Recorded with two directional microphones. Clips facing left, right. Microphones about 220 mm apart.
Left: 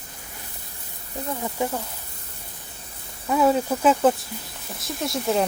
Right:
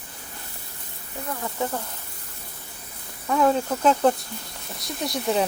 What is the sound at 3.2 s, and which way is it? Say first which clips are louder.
Speech: left 1 dB; 5° left (ahead or behind).